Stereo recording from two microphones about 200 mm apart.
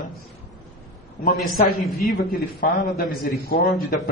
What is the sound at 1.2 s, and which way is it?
A man's voice, 50° left (ahead or behind).